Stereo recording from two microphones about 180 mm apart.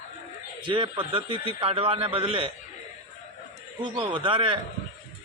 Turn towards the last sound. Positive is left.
turn(degrees=-30)  # may be behind; listen again after turning